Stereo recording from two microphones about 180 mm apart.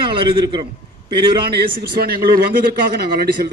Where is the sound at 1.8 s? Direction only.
60° right (ahead or behind).